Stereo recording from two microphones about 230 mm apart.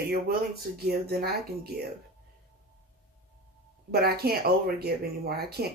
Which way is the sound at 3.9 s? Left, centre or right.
Right.